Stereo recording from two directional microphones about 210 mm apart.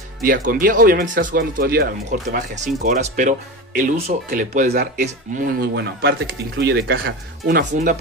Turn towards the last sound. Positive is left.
turn(degrees=-40)  # may be behind; listen again after turning